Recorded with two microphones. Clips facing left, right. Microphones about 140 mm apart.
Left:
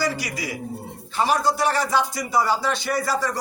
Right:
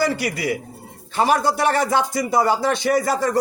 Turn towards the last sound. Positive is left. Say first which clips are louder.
# right 5 dB
turn(degrees=-50)  # may be behind; listen again after turning